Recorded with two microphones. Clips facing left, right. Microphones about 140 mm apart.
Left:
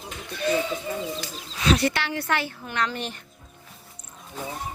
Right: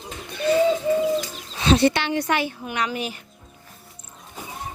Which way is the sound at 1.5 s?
30° right (ahead or behind).